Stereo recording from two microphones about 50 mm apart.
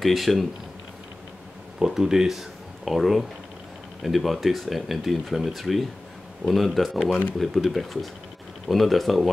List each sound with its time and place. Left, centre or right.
0.0 s speech: centre
1.8 s speech: centre